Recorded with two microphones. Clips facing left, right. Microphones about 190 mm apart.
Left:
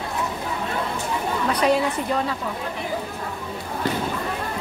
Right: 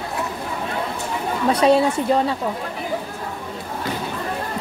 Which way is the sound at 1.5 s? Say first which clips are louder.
Right 5 dB; 25° right (ahead or behind).